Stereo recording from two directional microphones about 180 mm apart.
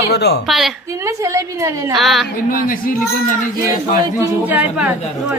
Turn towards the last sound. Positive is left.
turn(degrees=-10)  # may be behind; listen again after turning